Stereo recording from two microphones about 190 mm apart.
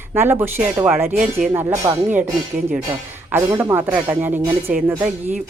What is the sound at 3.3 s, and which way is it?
Speech, 10° right (ahead or behind).